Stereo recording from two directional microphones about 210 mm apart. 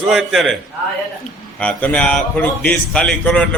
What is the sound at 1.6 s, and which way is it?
A man's voice, 5° left (ahead or behind).